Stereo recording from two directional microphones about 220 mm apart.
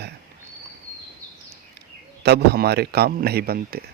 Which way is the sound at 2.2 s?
45° right (ahead or behind).